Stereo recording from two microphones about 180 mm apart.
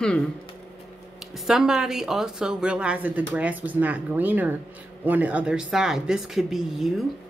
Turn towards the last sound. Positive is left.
turn(degrees=0)  # may be behind; listen again after turning